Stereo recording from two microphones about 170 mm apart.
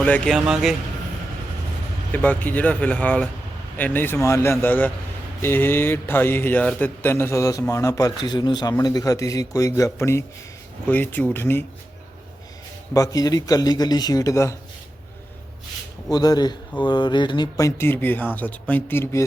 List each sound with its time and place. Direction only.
0.0 s a man's voice: 10° left (ahead or behind)
0.3 s speech: 5° right (ahead or behind)
2.1 s a man's voice: 10° left (ahead or behind)
12.9 s speech: 20° left (ahead or behind)
16.0 s a man's voice: 25° left (ahead or behind)